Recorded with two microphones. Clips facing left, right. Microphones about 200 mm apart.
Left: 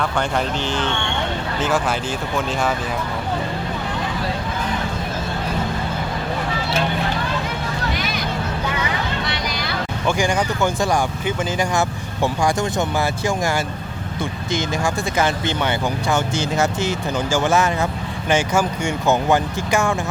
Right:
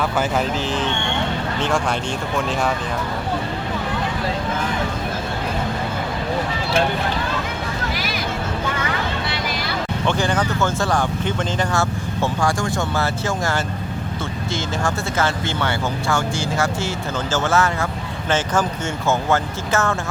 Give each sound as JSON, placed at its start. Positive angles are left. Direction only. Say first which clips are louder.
{"t": 0.0, "sound": "speech", "louder": "right 1 dB", "side_deg": -5}
{"t": 7.9, "sound": "vehicle", "louder": "left 1 dB", "side_deg": 0}
{"t": 10.1, "sound": "speech", "louder": "left 1 dB", "side_deg": 10}